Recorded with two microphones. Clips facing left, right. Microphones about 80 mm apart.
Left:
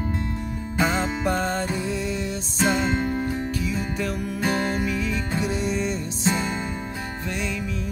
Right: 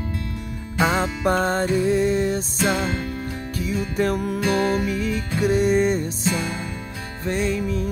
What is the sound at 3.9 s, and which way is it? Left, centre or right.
Music, right.